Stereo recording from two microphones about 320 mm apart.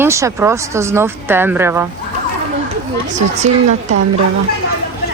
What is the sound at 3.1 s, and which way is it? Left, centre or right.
Speech, right.